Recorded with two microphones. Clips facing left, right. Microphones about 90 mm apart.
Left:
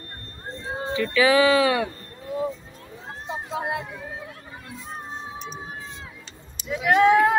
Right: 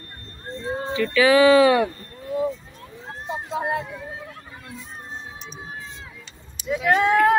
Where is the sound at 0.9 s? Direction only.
20° left (ahead or behind).